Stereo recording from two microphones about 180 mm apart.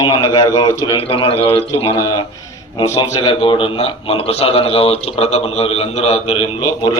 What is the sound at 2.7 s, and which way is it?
A man's voice, 20° left (ahead or behind).